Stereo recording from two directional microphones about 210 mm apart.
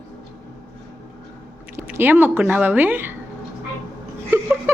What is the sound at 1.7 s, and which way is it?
Speech, 10° right (ahead or behind).